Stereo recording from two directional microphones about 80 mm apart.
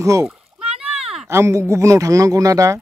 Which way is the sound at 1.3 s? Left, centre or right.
Right.